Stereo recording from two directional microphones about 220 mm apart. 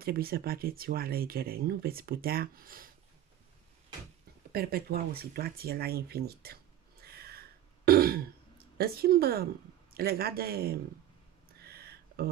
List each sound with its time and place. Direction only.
0.0 s speech: 45° right (ahead or behind)
4.5 s speech: 45° right (ahead or behind)
11.6 s a sound: 45° right (ahead or behind)